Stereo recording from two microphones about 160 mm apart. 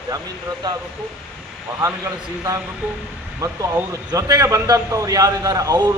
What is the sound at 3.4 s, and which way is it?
A man's voice, 20° right (ahead or behind).